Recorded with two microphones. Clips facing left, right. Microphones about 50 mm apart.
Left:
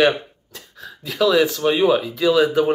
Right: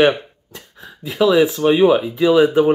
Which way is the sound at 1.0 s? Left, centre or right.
Centre.